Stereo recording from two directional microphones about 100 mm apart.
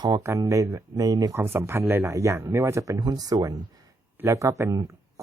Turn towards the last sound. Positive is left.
turn(degrees=-35)  # may be behind; listen again after turning